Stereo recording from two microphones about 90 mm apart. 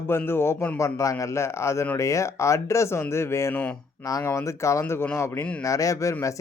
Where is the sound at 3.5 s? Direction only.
20° left (ahead or behind).